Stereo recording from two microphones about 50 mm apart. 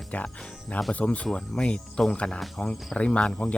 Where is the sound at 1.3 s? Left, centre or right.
Centre.